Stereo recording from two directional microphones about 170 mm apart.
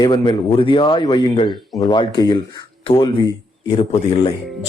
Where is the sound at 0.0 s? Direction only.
25° left (ahead or behind).